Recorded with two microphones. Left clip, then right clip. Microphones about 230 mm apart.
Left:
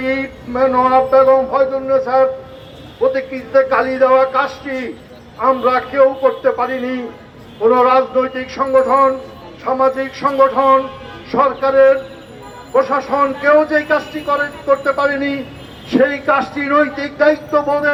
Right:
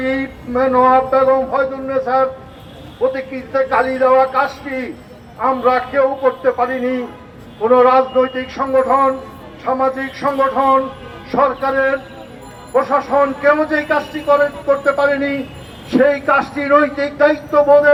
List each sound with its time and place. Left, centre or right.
0.0 s a man's voice: left